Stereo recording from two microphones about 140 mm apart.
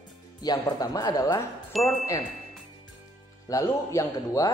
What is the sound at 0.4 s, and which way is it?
Speech, 30° left (ahead or behind).